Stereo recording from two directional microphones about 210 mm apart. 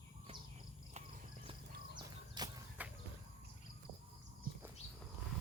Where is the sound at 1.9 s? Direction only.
20° right (ahead or behind).